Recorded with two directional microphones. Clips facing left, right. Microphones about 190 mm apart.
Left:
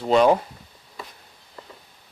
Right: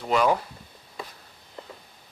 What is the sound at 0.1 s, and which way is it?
Speech, 30° left (ahead or behind).